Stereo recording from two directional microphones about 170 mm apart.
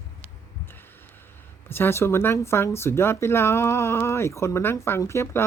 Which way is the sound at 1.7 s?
15° left (ahead or behind).